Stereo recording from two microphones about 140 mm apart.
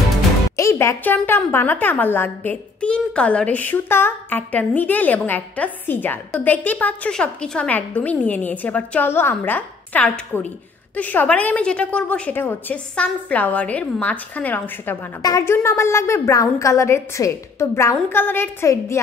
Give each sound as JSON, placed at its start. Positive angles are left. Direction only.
{"t": 0.6, "sound": "a woman's voice", "side_deg": 20}